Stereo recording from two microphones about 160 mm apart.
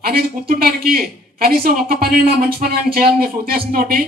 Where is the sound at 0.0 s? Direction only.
65° right (ahead or behind).